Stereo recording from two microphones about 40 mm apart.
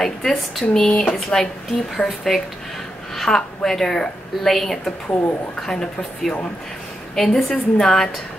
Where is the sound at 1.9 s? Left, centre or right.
Centre.